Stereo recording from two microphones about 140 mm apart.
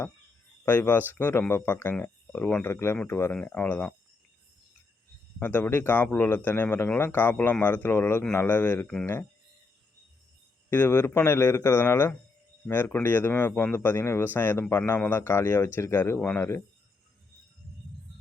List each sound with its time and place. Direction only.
0.6 s speech: 15° left (ahead or behind)
5.4 s speech: 15° left (ahead or behind)
10.7 s speech: 15° left (ahead or behind)